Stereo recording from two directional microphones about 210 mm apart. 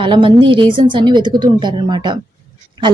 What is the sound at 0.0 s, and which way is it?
A woman's voice, 25° right (ahead or behind).